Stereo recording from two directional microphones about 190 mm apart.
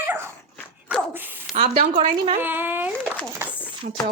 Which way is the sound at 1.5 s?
35° right (ahead or behind).